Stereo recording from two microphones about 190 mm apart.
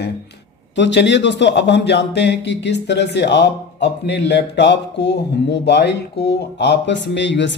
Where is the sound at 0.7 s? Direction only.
70° left (ahead or behind).